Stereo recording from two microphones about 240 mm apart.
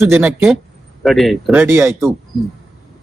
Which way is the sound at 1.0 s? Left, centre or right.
Centre.